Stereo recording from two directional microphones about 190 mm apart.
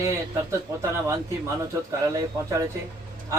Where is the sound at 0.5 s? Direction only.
15° right (ahead or behind).